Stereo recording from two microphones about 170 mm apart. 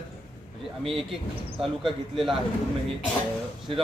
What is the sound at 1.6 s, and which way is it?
Speech, 35° right (ahead or behind).